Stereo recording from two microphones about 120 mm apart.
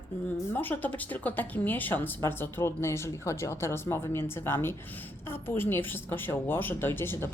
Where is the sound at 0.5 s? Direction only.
15° left (ahead or behind).